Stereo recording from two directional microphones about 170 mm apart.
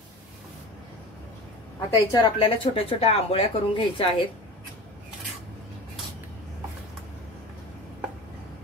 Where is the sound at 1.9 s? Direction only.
30° left (ahead or behind).